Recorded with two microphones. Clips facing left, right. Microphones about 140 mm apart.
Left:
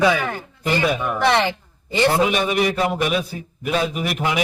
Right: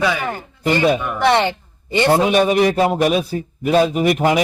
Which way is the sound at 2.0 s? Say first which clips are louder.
Right 5 dB; 35° right (ahead or behind).